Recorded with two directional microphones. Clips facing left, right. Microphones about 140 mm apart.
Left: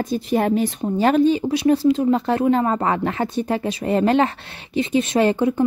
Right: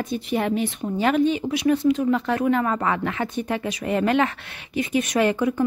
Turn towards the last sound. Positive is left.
turn(degrees=25)  # may be behind; listen again after turning